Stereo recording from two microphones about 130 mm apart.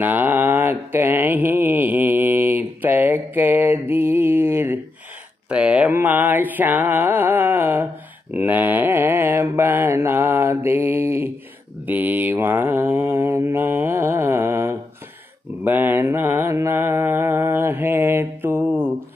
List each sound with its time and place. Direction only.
0.0 s a sound: 15° right (ahead or behind)
5.5 s music: 10° right (ahead or behind)
8.3 s mantra: 15° right (ahead or behind)